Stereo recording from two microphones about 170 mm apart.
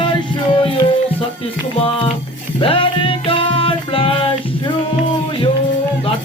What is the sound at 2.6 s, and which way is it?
Music, 30° left (ahead or behind).